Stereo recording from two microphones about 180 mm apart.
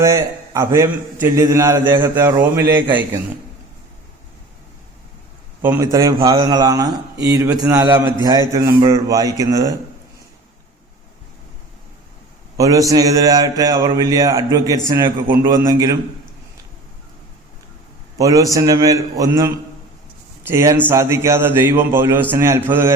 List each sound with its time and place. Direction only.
0.0 s a man's voice: 15° right (ahead or behind)
5.6 s speech: 15° right (ahead or behind)
12.5 s speech: 20° right (ahead or behind)
18.2 s a man's voice: 20° right (ahead or behind)